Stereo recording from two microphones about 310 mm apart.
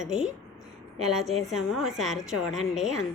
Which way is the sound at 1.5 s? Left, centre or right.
Centre.